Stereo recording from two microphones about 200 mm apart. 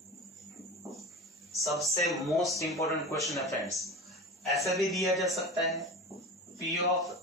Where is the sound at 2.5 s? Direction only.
15° left (ahead or behind).